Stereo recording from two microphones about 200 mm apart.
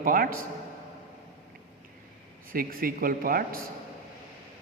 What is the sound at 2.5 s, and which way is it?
A man's voice, 45° right (ahead or behind).